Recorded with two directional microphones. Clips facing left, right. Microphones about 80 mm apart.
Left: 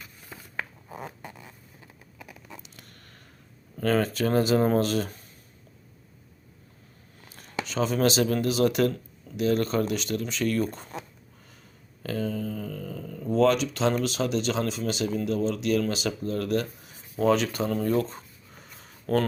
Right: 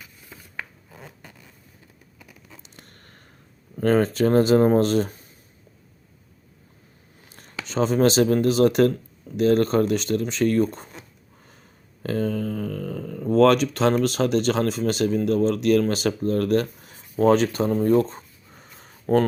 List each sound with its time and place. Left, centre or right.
2.6 s a sound: right
3.8 s speech: right
7.4 s speech: right
12.0 s mantra: right
12.3 s speech: right
18.6 s a sound: right